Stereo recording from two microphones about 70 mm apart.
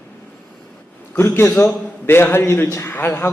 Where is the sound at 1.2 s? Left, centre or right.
Left.